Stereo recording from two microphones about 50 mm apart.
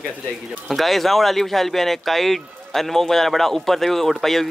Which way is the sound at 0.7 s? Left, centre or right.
Centre.